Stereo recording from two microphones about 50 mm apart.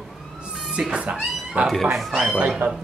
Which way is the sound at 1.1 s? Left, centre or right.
Right.